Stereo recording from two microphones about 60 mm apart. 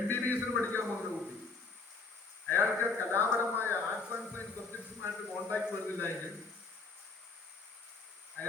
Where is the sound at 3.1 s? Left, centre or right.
Left.